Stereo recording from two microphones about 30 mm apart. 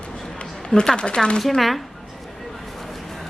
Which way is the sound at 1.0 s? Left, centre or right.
Left.